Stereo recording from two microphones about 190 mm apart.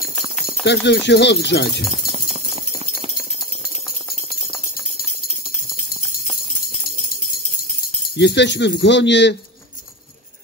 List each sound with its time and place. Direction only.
0.7 s speech: 65° left (ahead or behind)
8.2 s speech: 65° left (ahead or behind)